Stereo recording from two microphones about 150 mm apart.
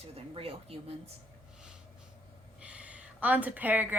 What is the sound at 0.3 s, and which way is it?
Speech, 40° right (ahead or behind).